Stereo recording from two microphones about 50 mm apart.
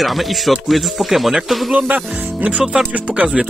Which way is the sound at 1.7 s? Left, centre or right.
Right.